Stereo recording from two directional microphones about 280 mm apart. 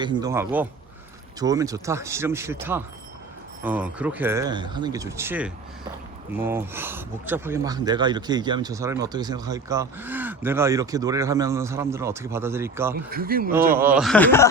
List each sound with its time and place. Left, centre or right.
0.0 s speech: centre
13.1 s speech: right
13.7 s speech: centre